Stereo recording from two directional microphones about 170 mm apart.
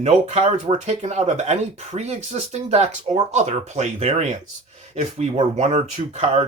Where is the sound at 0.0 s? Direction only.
40° right (ahead or behind).